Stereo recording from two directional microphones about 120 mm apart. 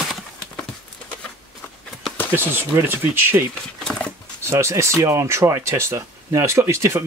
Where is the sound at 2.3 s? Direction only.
20° right (ahead or behind).